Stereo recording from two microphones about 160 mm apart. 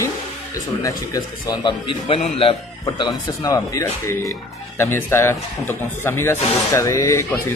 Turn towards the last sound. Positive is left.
turn(degrees=15)  # may be behind; listen again after turning